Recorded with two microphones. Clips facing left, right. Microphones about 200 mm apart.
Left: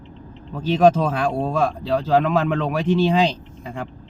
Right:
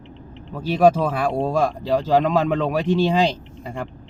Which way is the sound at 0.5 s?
10° right (ahead or behind).